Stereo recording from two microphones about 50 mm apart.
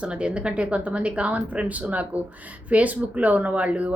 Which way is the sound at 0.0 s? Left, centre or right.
Right.